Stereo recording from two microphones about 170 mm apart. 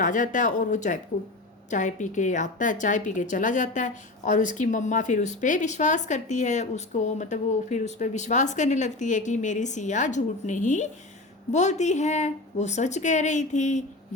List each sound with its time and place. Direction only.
0.0 s a woman's voice: 50° left (ahead or behind)